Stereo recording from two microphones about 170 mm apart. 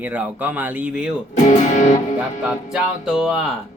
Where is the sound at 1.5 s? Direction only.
45° left (ahead or behind).